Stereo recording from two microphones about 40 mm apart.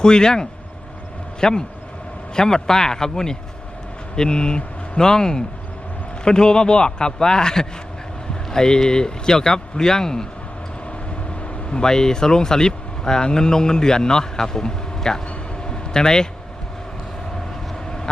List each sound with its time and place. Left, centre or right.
0.0 s a man's voice: centre
11.7 s speech: centre
15.6 s vehicle: centre